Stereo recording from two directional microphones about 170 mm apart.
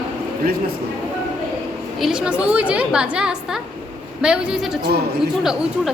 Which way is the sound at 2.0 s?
5° right (ahead or behind).